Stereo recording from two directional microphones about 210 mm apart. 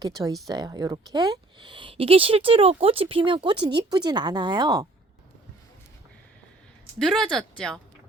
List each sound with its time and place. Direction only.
0.4 s speech: 20° right (ahead or behind)
7.0 s speech: centre (ahead or behind)